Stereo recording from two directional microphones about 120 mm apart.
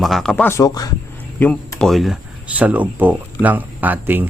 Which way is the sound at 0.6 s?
30° left (ahead or behind).